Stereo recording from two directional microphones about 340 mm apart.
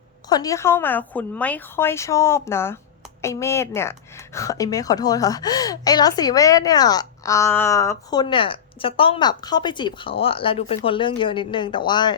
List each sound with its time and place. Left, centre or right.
0.3 s a woman's voice: centre